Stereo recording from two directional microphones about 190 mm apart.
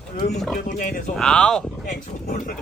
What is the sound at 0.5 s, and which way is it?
Speech, 45° left (ahead or behind).